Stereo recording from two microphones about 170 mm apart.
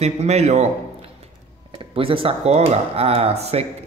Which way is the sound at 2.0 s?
30° right (ahead or behind).